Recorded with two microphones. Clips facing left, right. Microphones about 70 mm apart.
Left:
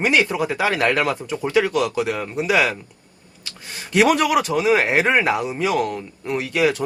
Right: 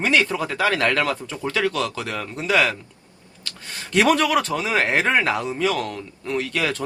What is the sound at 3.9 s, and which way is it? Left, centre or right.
Speech, centre.